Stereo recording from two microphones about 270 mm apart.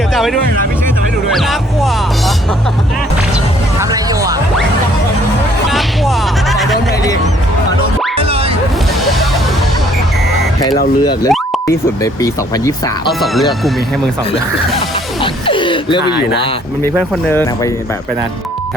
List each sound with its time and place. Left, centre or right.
0.1 s music: centre
3.8 s music: centre
5.7 s music: centre
8.2 s music: right
11.0 s speech: centre
13.1 s speech: centre
15.2 s music: centre
17.2 s speech: centre